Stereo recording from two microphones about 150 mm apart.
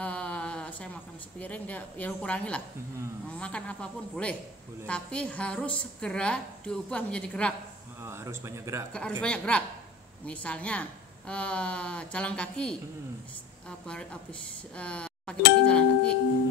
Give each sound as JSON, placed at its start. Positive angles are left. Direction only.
{"t": 0.0, "sound": "a sound", "side_deg": 10}
{"t": 1.4, "sound": "a woman's voice", "side_deg": 10}
{"t": 8.0, "sound": "speech", "side_deg": -15}
{"t": 9.2, "sound": "a woman's voice", "side_deg": 10}